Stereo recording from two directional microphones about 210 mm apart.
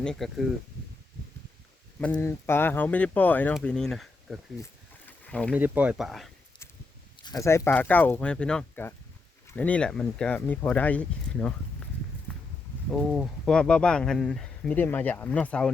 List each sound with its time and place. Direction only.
0.0 s speech: centre (ahead or behind)
2.1 s speech: 10° left (ahead or behind)
5.2 s a sound: 5° left (ahead or behind)
5.5 s speech: 10° right (ahead or behind)
7.2 s speech: 15° left (ahead or behind)
12.3 s clip-clop: 5° left (ahead or behind)
12.9 s speech: centre (ahead or behind)